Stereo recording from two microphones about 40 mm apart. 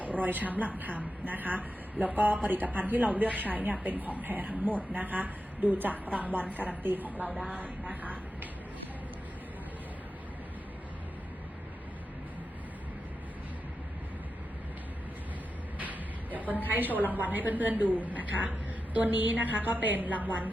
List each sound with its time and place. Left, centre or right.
0.1 s a woman's voice: right
15.8 s a sound: right
16.9 s a woman's voice: left
17.2 s a woman's voice: right